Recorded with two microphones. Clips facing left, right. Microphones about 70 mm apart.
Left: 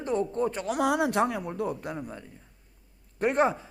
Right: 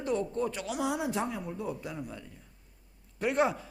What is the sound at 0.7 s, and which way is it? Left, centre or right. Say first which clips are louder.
A man's voice: left 9 dB; left.